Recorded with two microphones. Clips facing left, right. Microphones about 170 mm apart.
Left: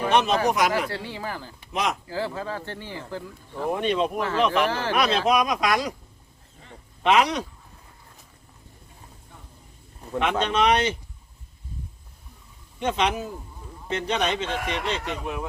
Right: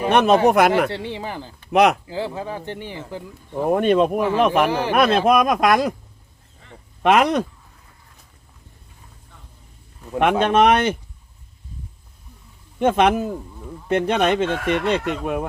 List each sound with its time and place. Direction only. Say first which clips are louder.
0.1 s speech: right 7 dB; 55° right (ahead or behind)
0.9 s speech: right 4 dB; 25° right (ahead or behind)
1.7 s speech: right 11 dB; 65° right (ahead or behind)
2.0 s speech: right 2 dB; 20° right (ahead or behind)
3.7 s speech: right 7 dB; 50° right (ahead or behind)
7.0 s speech: right 4 dB; 55° right (ahead or behind)
10.4 s speech: right 5 dB; 55° right (ahead or behind)
12.8 s speech: right 8 dB; 55° right (ahead or behind)